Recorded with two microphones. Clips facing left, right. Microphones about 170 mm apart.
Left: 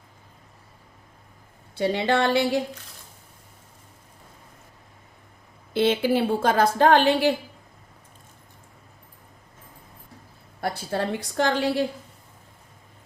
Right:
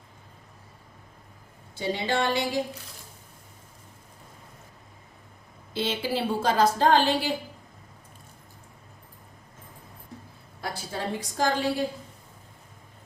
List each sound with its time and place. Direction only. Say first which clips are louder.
1.7 s a woman's voice: left 5 dB; 65° left (ahead or behind)
5.7 s a woman's voice: left 7 dB; 55° left (ahead or behind)
10.6 s a woman's voice: left 6 dB; 60° left (ahead or behind)